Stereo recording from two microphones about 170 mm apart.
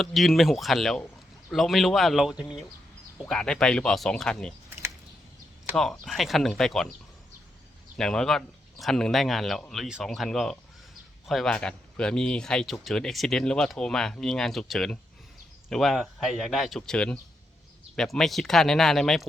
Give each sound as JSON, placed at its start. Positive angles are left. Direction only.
{"t": 0.0, "sound": "speech", "side_deg": 0}
{"t": 5.7, "sound": "speech", "side_deg": 0}
{"t": 7.9, "sound": "speech", "side_deg": 5}